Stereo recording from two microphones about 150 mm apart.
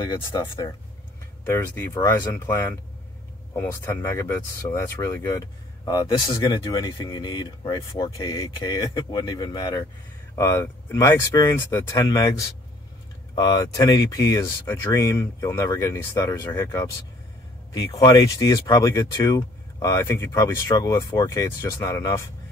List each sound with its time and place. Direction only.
0.0 s speech: 30° left (ahead or behind)
1.4 s speech: 15° left (ahead or behind)